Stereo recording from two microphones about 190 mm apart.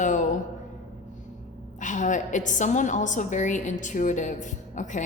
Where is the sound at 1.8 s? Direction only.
40° left (ahead or behind).